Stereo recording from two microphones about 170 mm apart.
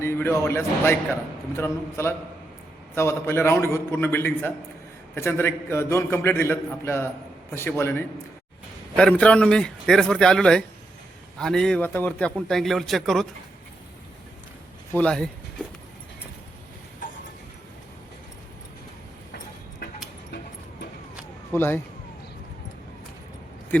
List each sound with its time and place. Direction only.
0.0 s a man's voice: 15° left (ahead or behind)
14.9 s a man's voice: 5° left (ahead or behind)
21.5 s speech: 10° left (ahead or behind)